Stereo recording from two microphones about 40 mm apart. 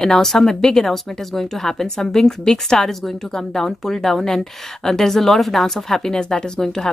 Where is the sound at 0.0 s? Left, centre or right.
Centre.